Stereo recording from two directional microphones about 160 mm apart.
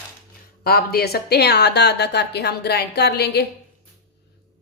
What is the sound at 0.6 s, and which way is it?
A woman's voice, 70° left (ahead or behind).